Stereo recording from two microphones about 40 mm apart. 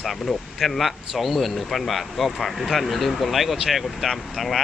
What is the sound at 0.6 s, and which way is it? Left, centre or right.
Speech, centre.